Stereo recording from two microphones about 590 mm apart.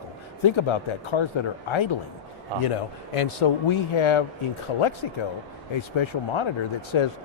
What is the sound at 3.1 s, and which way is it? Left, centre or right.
Speech, left.